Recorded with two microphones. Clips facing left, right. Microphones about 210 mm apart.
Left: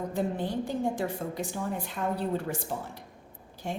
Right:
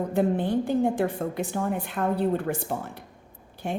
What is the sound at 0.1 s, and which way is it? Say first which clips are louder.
A woman's voice: right 9 dB; 60° right (ahead or behind).